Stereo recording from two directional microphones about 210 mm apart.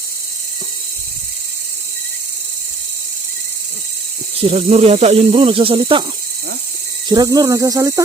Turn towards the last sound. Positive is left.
turn(degrees=-15)  # may be behind; listen again after turning